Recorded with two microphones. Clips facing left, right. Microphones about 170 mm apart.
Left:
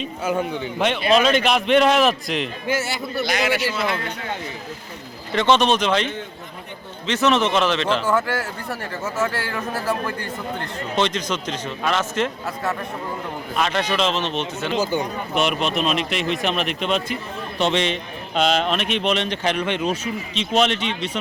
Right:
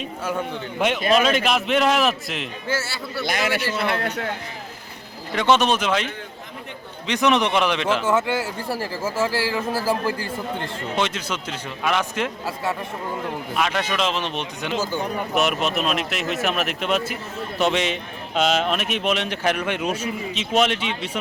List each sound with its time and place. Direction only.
0.2 s a man's voice: 10° left (ahead or behind)
1.1 s a man's voice: 5° right (ahead or behind)
2.6 s a man's voice: 15° left (ahead or behind)
3.2 s speech: 55° right (ahead or behind)
5.3 s speech: 10° right (ahead or behind)
7.1 s speech: 15° right (ahead or behind)
8.0 s speech: 25° right (ahead or behind)
10.9 s speech: 10° right (ahead or behind)
13.6 s speech: 5° right (ahead or behind)
14.8 s a man's voice: 15° left (ahead or behind)
15.4 s a man's voice: 5° right (ahead or behind)